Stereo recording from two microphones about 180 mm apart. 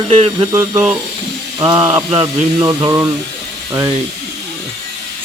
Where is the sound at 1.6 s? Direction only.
25° right (ahead or behind).